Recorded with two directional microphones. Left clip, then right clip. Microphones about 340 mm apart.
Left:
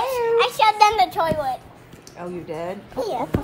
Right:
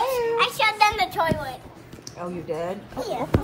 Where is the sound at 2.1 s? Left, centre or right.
Left.